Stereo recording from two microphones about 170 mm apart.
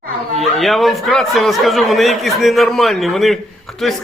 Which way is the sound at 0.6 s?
Centre (ahead or behind).